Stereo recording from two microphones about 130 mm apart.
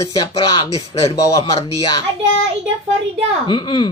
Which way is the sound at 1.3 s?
25° left (ahead or behind).